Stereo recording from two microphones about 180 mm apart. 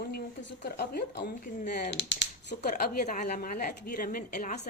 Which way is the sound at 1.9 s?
90° left.